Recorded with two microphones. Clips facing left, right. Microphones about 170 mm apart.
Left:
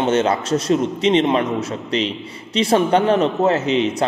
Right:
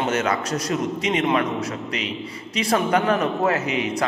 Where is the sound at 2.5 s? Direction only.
30° left (ahead or behind).